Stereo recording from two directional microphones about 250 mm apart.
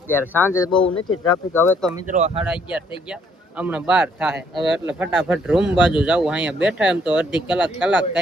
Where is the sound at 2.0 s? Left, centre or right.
Right.